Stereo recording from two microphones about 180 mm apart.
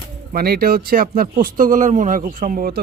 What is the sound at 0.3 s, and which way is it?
Speech, 55° right (ahead or behind).